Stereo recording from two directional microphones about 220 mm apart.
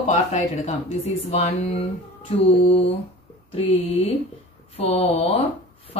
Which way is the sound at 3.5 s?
25° left (ahead or behind).